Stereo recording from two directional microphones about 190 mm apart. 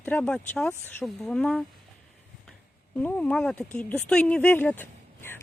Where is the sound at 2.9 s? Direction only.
5° left (ahead or behind).